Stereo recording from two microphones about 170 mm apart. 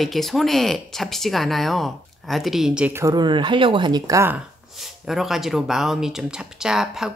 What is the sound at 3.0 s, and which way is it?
Speech, 25° right (ahead or behind).